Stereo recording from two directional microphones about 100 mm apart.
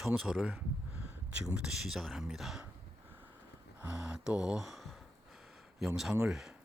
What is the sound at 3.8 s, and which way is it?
Speech, 10° right (ahead or behind).